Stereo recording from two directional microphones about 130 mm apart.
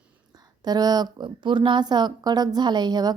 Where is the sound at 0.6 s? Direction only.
30° right (ahead or behind).